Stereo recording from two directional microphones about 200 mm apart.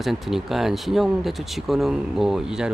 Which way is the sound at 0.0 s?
Centre (ahead or behind).